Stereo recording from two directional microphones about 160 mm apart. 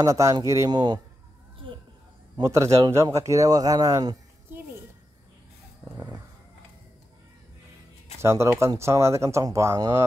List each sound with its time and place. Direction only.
0.0 s speech: 20° right (ahead or behind)
2.3 s speech: 20° right (ahead or behind)
5.9 s speech: 20° right (ahead or behind)
8.2 s speech: 15° right (ahead or behind)